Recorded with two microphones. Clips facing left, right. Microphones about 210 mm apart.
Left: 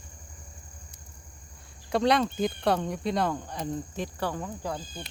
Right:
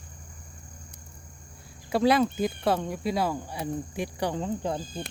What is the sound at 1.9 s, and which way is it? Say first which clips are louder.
Speech: right 2 dB; 5° right (ahead or behind).